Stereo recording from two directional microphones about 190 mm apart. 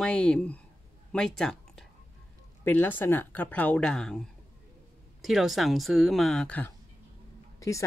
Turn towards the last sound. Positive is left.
turn(degrees=15)  # may be behind; listen again after turning